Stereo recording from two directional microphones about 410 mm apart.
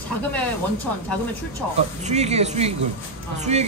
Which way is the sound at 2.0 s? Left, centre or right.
Centre.